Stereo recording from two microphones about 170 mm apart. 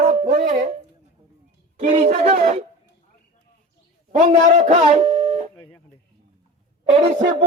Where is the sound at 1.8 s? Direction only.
40° right (ahead or behind).